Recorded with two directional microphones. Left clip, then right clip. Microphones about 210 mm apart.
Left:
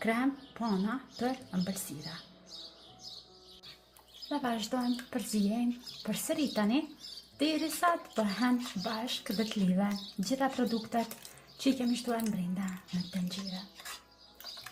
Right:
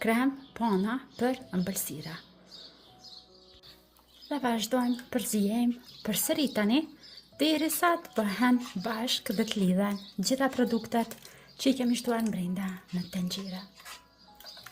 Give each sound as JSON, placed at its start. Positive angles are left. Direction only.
{"t": 0.0, "sound": "speech", "side_deg": -45}
{"t": 4.4, "sound": "speech", "side_deg": -45}